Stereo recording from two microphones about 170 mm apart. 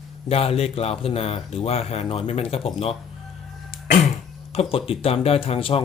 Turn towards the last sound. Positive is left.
turn(degrees=30)  # may be behind; listen again after turning